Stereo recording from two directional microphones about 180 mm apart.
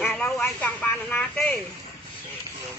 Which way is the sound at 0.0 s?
10° left (ahead or behind).